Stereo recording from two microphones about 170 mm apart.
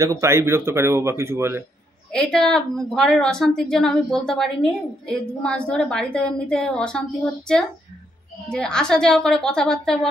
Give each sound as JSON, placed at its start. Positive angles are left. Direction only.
{"t": 0.0, "sound": "speech", "side_deg": -20}
{"t": 2.1, "sound": "a woman's voice", "side_deg": 5}